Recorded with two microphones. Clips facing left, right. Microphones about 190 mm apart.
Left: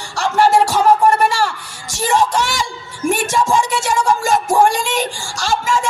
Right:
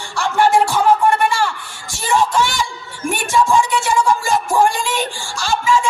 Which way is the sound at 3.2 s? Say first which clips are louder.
Right 5 dB; 45° left (ahead or behind).